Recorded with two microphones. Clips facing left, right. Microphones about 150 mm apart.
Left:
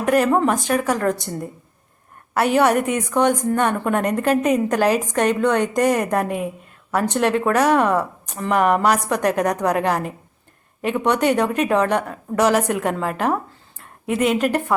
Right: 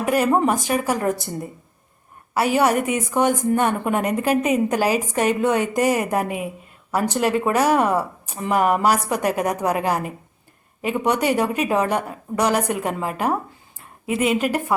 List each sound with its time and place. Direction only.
0.0 s a woman's voice: 5° right (ahead or behind)
0.3 s a woman's voice: 15° right (ahead or behind)
0.5 s a woman's voice: 5° right (ahead or behind)